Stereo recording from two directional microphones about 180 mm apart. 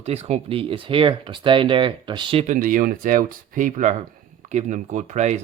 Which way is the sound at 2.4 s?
45° right (ahead or behind).